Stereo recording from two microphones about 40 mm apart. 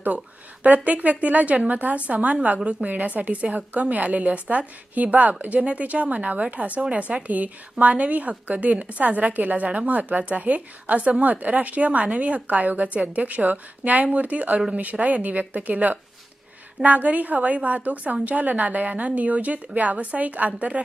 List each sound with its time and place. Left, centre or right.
0.7 s a woman's voice: right